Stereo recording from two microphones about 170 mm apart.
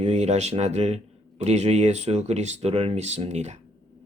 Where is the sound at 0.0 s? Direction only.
40° right (ahead or behind).